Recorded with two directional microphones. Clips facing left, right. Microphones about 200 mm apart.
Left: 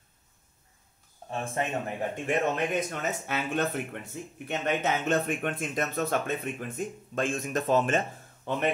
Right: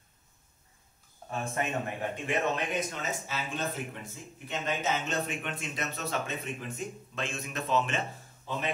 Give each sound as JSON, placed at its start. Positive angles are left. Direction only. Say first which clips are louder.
{"t": 1.3, "sound": "speech", "louder": "left 2 dB", "side_deg": 30}
{"t": 2.2, "sound": "speech", "louder": "left 3 dB", "side_deg": 55}
{"t": 8.5, "sound": "speech", "louder": "left 5 dB", "side_deg": 60}